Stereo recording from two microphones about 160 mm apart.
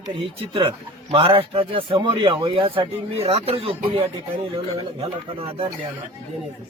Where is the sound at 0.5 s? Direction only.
35° right (ahead or behind).